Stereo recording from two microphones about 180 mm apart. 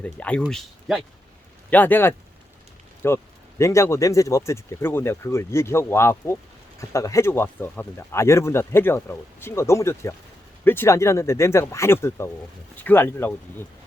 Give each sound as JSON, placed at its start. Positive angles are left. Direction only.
{"t": 0.0, "sound": "speech", "side_deg": 5}